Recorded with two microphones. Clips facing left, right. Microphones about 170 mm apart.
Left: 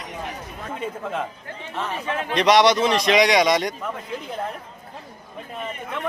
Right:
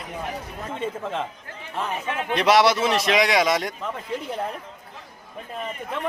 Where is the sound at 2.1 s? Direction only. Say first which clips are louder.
Left 1 dB; 35° left (ahead or behind).